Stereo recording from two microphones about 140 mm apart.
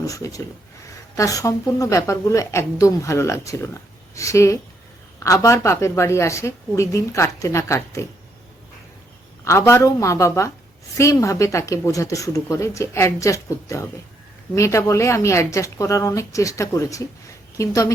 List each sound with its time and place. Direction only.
0.0 s a woman's voice: 25° left (ahead or behind)
9.4 s a woman's voice: 20° left (ahead or behind)